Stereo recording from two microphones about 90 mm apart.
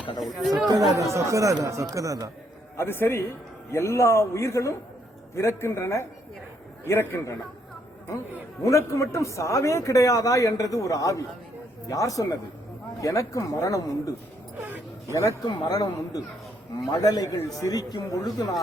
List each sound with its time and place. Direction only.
0.2 s speech: 5° right (ahead or behind)
0.7 s speech: 40° right (ahead or behind)
2.7 s a man's voice: 25° left (ahead or behind)
8.6 s a man's voice: 35° left (ahead or behind)
15.1 s a man's voice: 35° left (ahead or behind)